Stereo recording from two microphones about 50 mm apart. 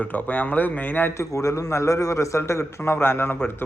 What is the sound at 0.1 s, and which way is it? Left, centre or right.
A man's voice, left.